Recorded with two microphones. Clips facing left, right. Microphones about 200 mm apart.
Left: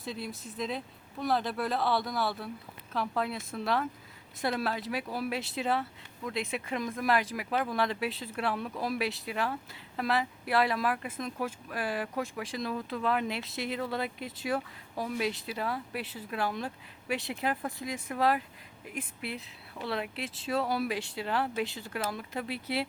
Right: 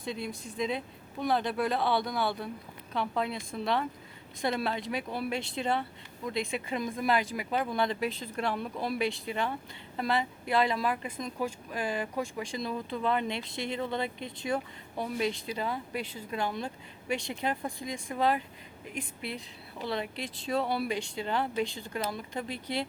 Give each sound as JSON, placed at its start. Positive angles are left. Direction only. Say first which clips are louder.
{"t": 0.0, "sound": "speech", "louder": "right 2 dB", "side_deg": 0}